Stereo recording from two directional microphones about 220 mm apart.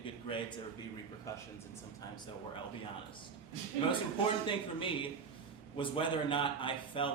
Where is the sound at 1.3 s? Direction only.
15° left (ahead or behind).